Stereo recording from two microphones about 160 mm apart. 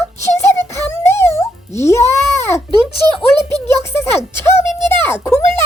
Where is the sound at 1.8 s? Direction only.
15° left (ahead or behind).